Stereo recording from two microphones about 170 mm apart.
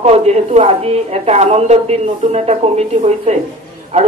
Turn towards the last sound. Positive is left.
turn(degrees=-35)  # may be behind; listen again after turning